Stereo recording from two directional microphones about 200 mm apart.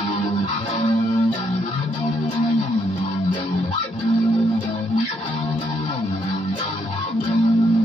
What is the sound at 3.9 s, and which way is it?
Music, 25° left (ahead or behind).